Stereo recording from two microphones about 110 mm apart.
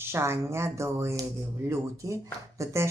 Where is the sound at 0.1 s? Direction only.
25° right (ahead or behind).